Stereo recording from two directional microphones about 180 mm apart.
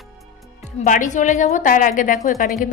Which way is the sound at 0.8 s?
45° left (ahead or behind).